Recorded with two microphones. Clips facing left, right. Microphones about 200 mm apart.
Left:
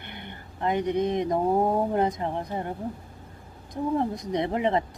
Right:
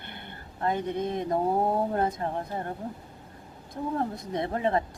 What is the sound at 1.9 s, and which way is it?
Speech, 15° left (ahead or behind).